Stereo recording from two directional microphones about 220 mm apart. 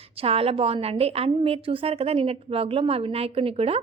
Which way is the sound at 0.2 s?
25° right (ahead or behind).